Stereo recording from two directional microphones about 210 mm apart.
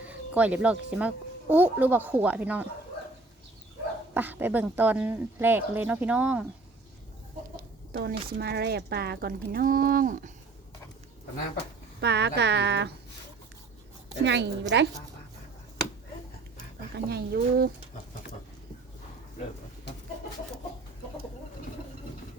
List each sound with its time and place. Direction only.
0.0 s speech: 5° right (ahead or behind)
4.1 s speech: 10° right (ahead or behind)
7.5 s chicken: 45° right (ahead or behind)
8.3 s speech: 50° right (ahead or behind)
11.9 s speech: 55° right (ahead or behind)
14.3 s a woman's voice: 55° right (ahead or behind)
16.9 s speech: 50° right (ahead or behind)